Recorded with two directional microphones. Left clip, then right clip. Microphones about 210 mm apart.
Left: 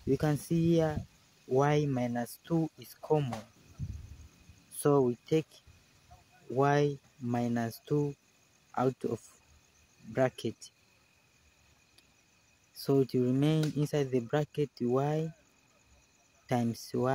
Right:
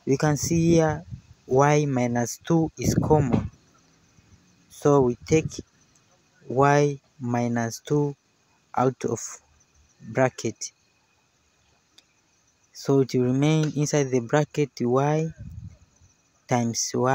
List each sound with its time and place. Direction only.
0.1 s speech: 25° right (ahead or behind)
4.7 s speech: 20° right (ahead or behind)
12.7 s speech: 25° right (ahead or behind)
16.4 s speech: 25° right (ahead or behind)